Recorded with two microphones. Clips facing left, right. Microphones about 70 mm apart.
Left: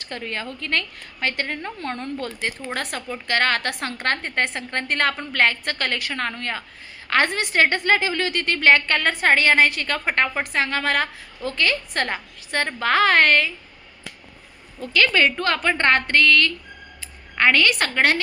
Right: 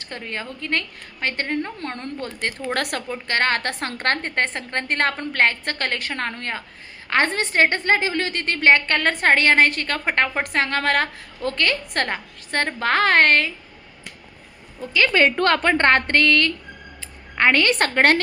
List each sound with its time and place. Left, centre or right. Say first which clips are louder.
0.0 s a woman's voice: left 1 dB; right
2.7 s speech: right 3 dB; right
3.1 s a woman's voice: left 2 dB; right
9.0 s a woman's voice: right 1 dB; right
14.8 s a woman's voice: right 1 dB; right
15.4 s a woman's voice: right 4 dB; right